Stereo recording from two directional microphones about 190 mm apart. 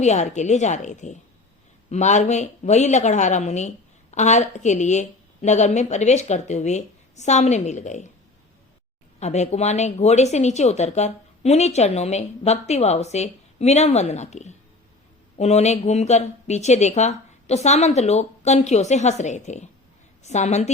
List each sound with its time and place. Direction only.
0.0 s speech: 35° left (ahead or behind)
9.2 s speech: 35° left (ahead or behind)